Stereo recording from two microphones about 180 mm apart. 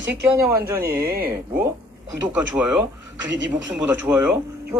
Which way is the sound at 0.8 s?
55° right (ahead or behind).